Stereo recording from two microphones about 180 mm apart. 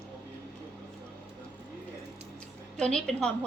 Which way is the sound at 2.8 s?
5° left (ahead or behind).